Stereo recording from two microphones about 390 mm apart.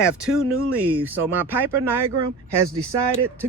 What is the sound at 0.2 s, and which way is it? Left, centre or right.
Speech, centre.